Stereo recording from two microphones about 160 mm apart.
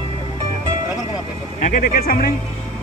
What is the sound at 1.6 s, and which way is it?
Speech, 65° left (ahead or behind).